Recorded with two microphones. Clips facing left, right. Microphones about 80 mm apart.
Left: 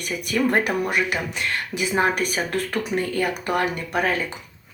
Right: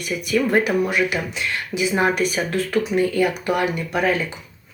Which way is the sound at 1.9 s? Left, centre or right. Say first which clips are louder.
Right 1 dB; left.